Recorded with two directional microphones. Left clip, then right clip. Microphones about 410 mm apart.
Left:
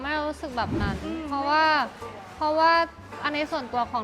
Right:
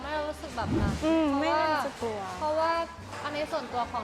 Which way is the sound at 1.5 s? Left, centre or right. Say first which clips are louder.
Left 11 dB; left.